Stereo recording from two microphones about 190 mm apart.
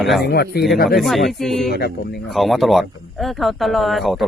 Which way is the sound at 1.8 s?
60° left (ahead or behind).